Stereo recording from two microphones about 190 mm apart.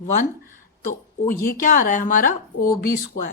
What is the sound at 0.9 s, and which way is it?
Speech, 45° left (ahead or behind).